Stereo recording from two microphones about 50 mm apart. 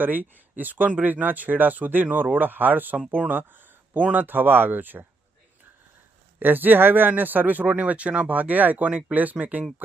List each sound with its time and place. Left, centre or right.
0.0 s speech: right
3.2 s a sound: right
4.1 s speech: right
6.4 s speech: right
8.3 s speech: right
8.9 s speech: right